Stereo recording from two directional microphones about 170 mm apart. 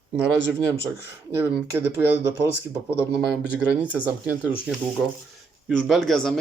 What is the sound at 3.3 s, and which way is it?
Speech, 5° right (ahead or behind).